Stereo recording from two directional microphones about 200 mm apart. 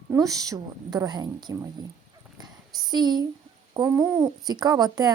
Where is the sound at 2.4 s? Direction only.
20° right (ahead or behind).